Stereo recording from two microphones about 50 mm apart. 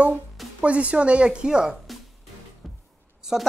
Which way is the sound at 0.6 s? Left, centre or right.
Right.